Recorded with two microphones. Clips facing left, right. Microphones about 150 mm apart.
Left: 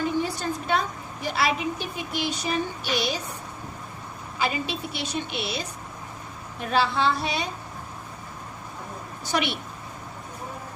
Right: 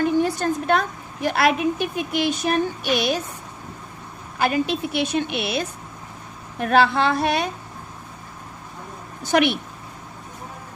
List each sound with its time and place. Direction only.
0.0 s a woman's voice: 55° right (ahead or behind)
4.4 s a woman's voice: 55° right (ahead or behind)
9.2 s a woman's voice: 50° right (ahead or behind)